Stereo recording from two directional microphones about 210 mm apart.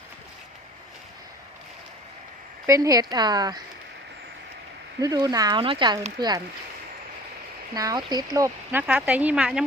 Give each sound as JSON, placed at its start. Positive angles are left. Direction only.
{"t": 2.6, "sound": "speech", "side_deg": -15}
{"t": 4.9, "sound": "speech", "side_deg": -20}
{"t": 7.7, "sound": "speech", "side_deg": -20}